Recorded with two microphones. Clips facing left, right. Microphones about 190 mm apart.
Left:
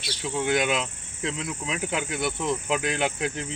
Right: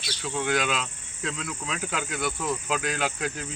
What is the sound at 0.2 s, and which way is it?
Speech, 20° left (ahead or behind).